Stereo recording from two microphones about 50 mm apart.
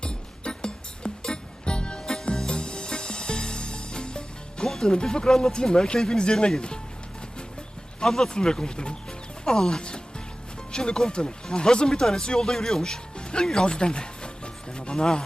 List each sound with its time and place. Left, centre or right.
0.0 s music: centre
8.0 s speech: centre
9.4 s music: centre
10.7 s speech: centre